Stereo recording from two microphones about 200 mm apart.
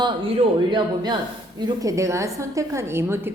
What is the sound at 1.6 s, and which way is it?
Speech, 20° right (ahead or behind).